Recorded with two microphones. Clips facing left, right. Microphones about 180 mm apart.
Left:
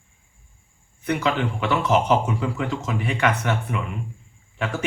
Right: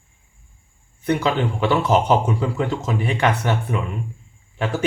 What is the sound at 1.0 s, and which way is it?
Speech, 30° right (ahead or behind).